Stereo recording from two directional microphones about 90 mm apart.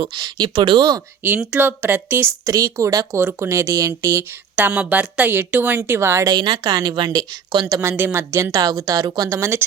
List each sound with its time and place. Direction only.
0.0 s speech: 55° right (ahead or behind)
1.4 s a woman's voice: 20° right (ahead or behind)
2.5 s a woman's voice: 35° right (ahead or behind)
3.2 s a woman's voice: 25° right (ahead or behind)
4.5 s a woman's voice: 20° right (ahead or behind)
6.2 s speech: 55° right (ahead or behind)
7.7 s a woman's voice: 30° right (ahead or behind); by 9.3 s 45° right (ahead or behind)
9.3 s a woman's voice: 30° right (ahead or behind)